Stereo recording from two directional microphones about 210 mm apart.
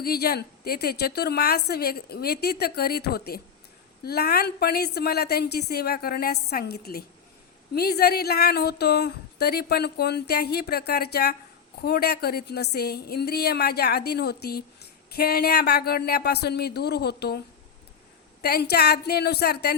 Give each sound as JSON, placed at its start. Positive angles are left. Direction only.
{"t": 0.0, "sound": "a woman's voice", "side_deg": 45}
{"t": 18.4, "sound": "a woman's voice", "side_deg": 50}